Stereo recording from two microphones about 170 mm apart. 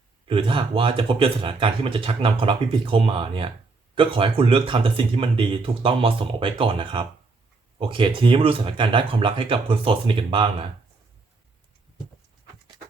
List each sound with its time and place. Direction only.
0.3 s speech: 30° right (ahead or behind)